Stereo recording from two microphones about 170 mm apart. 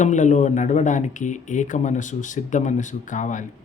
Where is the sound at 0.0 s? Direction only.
45° left (ahead or behind).